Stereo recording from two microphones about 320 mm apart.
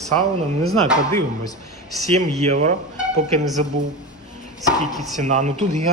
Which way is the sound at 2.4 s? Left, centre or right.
Right.